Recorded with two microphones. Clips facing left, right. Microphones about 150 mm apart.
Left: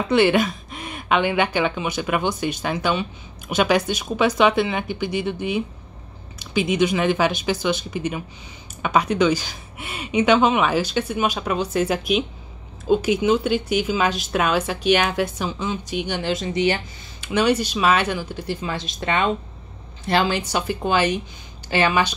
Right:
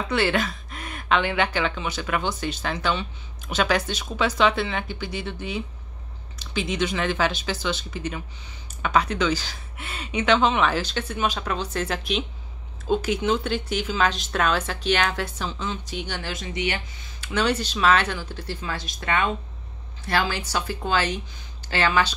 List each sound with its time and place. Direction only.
0.1 s speech: 15° left (ahead or behind); by 16.8 s 35° left (ahead or behind)
17.2 s speech: 15° left (ahead or behind)